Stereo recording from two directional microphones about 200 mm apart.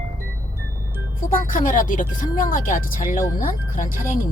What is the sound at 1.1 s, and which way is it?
Speech, 40° left (ahead or behind).